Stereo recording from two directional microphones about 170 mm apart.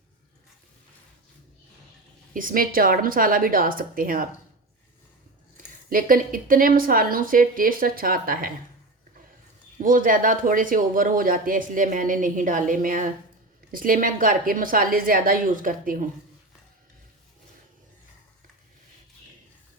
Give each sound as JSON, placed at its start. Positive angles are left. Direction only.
{"t": 2.3, "sound": "a woman's voice", "side_deg": -55}
{"t": 5.5, "sound": "a woman's voice", "side_deg": -55}
{"t": 9.8, "sound": "a woman's voice", "side_deg": -55}